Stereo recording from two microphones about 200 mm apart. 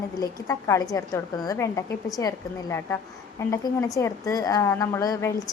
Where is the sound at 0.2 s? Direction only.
15° left (ahead or behind).